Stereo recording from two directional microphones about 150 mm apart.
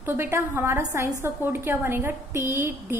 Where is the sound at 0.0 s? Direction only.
15° right (ahead or behind).